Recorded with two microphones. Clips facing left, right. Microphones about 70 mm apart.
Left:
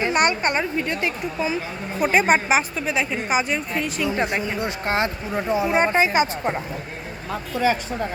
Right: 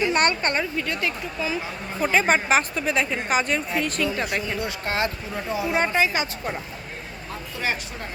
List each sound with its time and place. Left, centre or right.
0.1 s a woman's voice: centre
4.1 s speech: left